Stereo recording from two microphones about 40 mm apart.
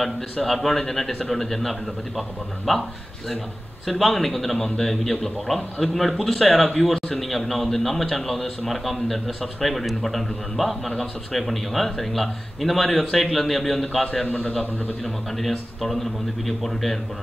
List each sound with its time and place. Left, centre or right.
0.0 s speech: centre
4.0 s speech: centre
14.2 s a man's voice: left
15.0 s speech: centre